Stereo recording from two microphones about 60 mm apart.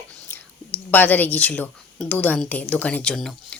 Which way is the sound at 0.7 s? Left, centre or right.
Left.